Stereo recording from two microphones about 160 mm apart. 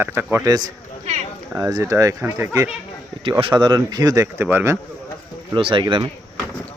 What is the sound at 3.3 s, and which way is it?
Speech, 30° right (ahead or behind).